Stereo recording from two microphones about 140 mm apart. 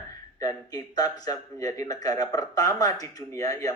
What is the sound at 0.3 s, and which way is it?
Speech, 25° left (ahead or behind).